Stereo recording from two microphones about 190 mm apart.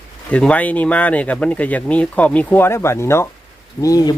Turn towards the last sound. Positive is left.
turn(degrees=20)  # may be behind; listen again after turning